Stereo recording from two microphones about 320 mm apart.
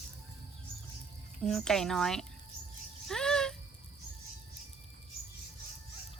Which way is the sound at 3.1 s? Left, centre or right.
Centre.